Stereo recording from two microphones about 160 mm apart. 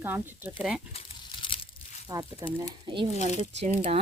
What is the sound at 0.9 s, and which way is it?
Crumpling, 35° left (ahead or behind).